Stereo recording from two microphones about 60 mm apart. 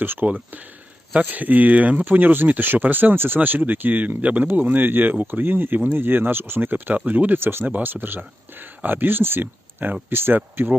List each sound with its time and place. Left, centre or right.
0.0 s speech: right
7.3 s speech: right